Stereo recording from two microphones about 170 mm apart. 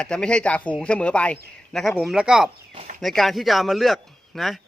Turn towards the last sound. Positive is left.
turn(degrees=0)  # may be behind; listen again after turning